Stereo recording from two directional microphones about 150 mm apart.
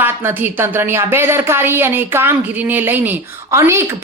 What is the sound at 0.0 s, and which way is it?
A woman's voice, 15° right (ahead or behind).